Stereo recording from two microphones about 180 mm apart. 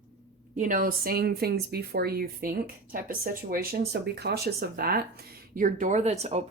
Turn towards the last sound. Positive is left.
turn(degrees=-35)  # may be behind; listen again after turning